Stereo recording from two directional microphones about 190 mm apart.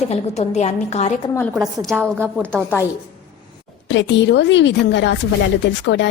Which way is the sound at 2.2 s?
10° right (ahead or behind).